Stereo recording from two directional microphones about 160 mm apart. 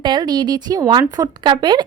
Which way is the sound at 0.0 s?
25° right (ahead or behind).